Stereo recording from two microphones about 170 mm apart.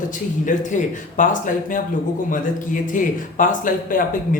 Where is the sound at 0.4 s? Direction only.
50° left (ahead or behind).